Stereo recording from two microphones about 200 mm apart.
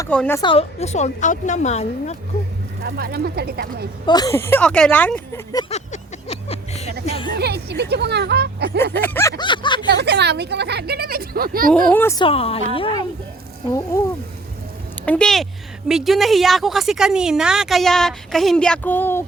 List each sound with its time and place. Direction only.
0.1 s speech: 10° left (ahead or behind)
0.4 s a woman's voice: 30° left (ahead or behind)
2.8 s speech: 50° right (ahead or behind)
4.0 s speech: 20° left (ahead or behind)
5.7 s vehicle: 35° left (ahead or behind)
7.3 s speech: 55° right (ahead or behind)
8.9 s a sound: 10° left (ahead or behind)
9.4 s a sound: 25° left (ahead or behind)
9.9 s speech: 55° right (ahead or behind)
11.7 s speech: 10° left (ahead or behind)
12.2 s speech: 30° left (ahead or behind)
13.9 s a woman's voice: 15° left (ahead or behind)